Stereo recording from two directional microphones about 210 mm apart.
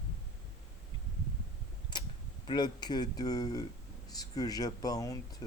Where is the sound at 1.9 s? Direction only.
20° left (ahead or behind).